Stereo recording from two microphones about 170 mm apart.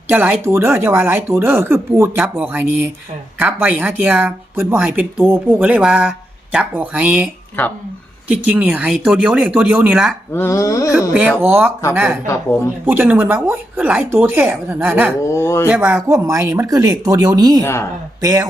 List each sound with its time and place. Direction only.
0.1 s speech: 10° right (ahead or behind)
7.6 s speech: 10° left (ahead or behind)
8.3 s speech: 10° right (ahead or behind)
10.3 s a sound: 15° left (ahead or behind)
11.1 s speech: 10° right (ahead or behind)
12.8 s speech: 10° right (ahead or behind)
15.3 s speech: 15° left (ahead or behind)
15.7 s speech: 10° right (ahead or behind)
17.6 s speech: 15° left (ahead or behind)
18.2 s speech: 20° right (ahead or behind)